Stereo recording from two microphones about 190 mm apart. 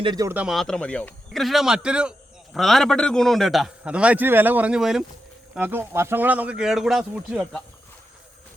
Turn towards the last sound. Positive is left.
turn(degrees=0)  # may be behind; listen again after turning